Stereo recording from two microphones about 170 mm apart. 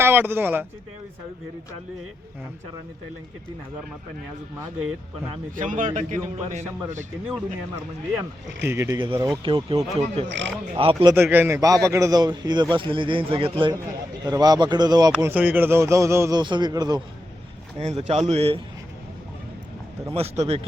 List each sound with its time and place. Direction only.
0.0 s speech: 10° right (ahead or behind)
5.5 s a man's voice: 50° right (ahead or behind)
8.6 s a man's voice: 15° right (ahead or behind)
9.0 s a man's voice: 25° right (ahead or behind)
11.1 s a man's voice: 10° right (ahead or behind)
15.3 s a man's voice: 10° right (ahead or behind)
16.4 s a man's voice: 25° right (ahead or behind)
17.7 s speech: 35° right (ahead or behind)
20.1 s speech: 40° right (ahead or behind)